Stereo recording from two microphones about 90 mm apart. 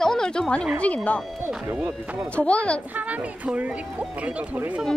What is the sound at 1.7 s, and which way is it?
Speech, 20° right (ahead or behind).